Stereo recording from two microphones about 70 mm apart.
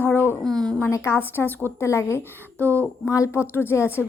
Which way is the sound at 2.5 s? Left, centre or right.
Left.